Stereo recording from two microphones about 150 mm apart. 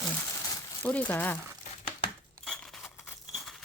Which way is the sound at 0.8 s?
10° left (ahead or behind).